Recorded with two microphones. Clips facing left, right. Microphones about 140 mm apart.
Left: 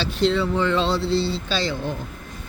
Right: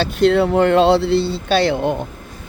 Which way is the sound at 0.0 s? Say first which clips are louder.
Right 7 dB; 55° right (ahead or behind).